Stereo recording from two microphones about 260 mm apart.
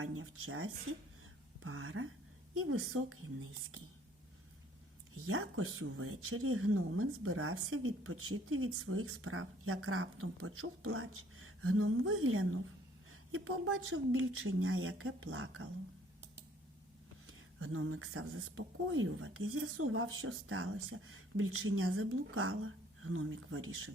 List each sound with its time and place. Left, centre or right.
0.0 s a woman's voice: right
5.1 s speech: right
17.2 s speech: right